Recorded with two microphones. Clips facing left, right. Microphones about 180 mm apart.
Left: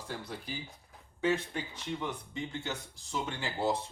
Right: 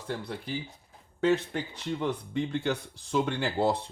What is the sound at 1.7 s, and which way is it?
Speech, 65° right (ahead or behind).